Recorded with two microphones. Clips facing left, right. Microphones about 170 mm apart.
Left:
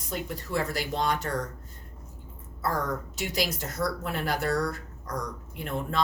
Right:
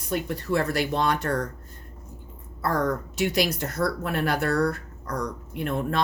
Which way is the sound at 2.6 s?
60° right (ahead or behind).